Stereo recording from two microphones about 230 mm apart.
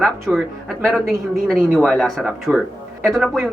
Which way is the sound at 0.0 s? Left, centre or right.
Centre.